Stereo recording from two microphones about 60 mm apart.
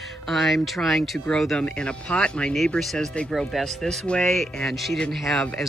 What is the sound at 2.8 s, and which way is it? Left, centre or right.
Speech, centre.